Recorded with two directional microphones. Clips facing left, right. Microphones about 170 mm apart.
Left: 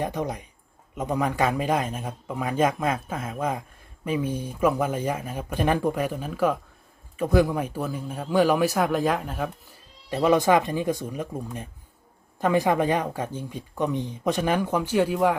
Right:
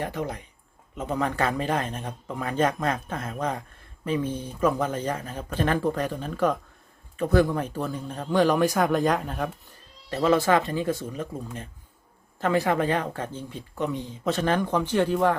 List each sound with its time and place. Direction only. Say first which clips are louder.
0.0 s speech: left 2 dB; 15° left (ahead or behind)
10.1 s speech: left 1 dB; 15° left (ahead or behind)